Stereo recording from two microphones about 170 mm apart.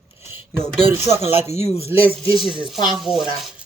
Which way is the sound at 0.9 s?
15° right (ahead or behind).